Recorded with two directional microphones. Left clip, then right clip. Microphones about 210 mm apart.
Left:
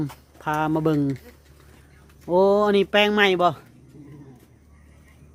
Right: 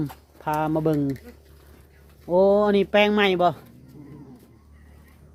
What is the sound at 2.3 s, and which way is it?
Speech, 20° left (ahead or behind).